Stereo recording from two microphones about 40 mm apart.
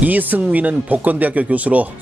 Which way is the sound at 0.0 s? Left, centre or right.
Right.